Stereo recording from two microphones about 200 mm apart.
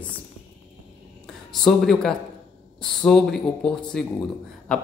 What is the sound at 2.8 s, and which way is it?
Speech, centre (ahead or behind).